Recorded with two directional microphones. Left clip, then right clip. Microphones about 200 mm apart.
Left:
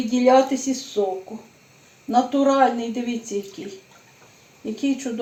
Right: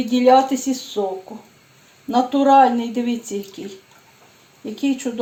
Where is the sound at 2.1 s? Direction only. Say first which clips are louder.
Right 5 dB; 35° right (ahead or behind).